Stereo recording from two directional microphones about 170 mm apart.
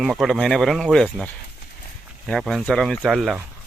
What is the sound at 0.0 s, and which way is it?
Speech, centre (ahead or behind).